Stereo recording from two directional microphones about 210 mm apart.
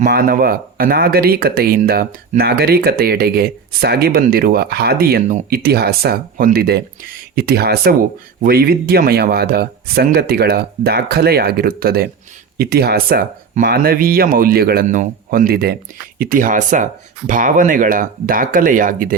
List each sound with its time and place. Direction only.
0.0 s speech: 45° right (ahead or behind)